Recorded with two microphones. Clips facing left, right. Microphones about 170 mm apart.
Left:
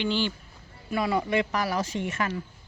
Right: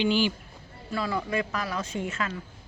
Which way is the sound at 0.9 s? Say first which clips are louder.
Left 3 dB; 20° left (ahead or behind).